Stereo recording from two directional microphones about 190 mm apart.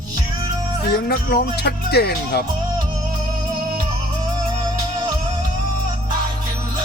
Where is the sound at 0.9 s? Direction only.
55° left (ahead or behind).